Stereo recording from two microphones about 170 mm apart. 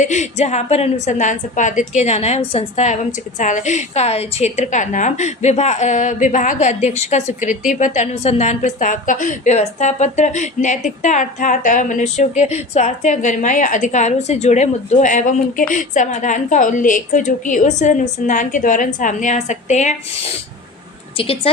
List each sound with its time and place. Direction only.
0.0 s a woman's voice: 45° left (ahead or behind)
21.2 s speech: 35° left (ahead or behind)